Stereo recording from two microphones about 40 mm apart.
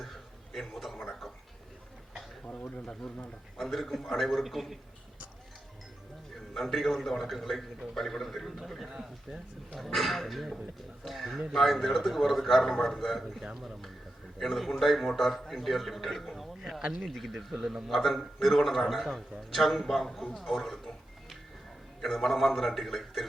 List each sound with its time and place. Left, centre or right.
0.5 s a sound: centre
2.5 s speech: left
3.6 s a man's voice: centre
6.5 s a man's voice: centre
8.9 s speech: centre
9.7 s a man's voice: centre
13.4 s speech: centre
14.3 s a man's voice: centre